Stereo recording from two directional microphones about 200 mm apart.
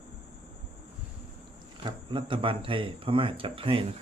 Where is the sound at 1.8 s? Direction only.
25° right (ahead or behind).